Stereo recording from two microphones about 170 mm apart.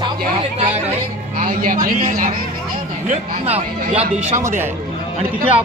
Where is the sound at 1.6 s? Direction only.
50° right (ahead or behind).